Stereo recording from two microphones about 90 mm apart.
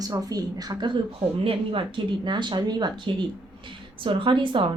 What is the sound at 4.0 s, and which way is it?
Speech, 70° right (ahead or behind).